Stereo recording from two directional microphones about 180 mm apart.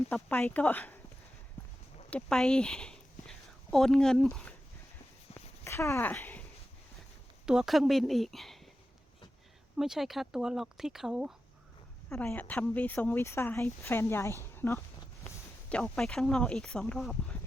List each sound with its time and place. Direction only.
0.1 s speech: 10° left (ahead or behind)
2.0 s speech: 5° left (ahead or behind)
5.3 s walk: 15° left (ahead or behind)
7.4 s speech: 5° right (ahead or behind)
9.7 s speech: 5° right (ahead or behind)
12.0 s speech: 10° left (ahead or behind)